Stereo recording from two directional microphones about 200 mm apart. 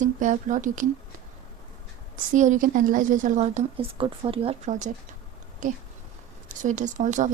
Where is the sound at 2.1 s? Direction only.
40° right (ahead or behind).